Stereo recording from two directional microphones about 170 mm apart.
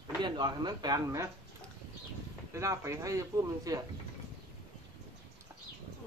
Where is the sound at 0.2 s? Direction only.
25° right (ahead or behind).